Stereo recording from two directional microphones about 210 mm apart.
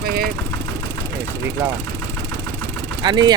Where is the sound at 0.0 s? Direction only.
45° right (ahead or behind).